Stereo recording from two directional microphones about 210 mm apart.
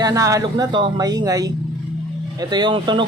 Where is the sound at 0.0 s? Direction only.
15° right (ahead or behind).